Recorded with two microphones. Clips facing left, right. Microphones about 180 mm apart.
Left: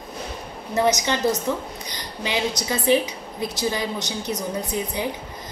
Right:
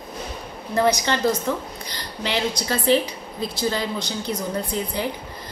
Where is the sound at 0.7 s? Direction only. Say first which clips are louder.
Right 1 dB; 20° left (ahead or behind).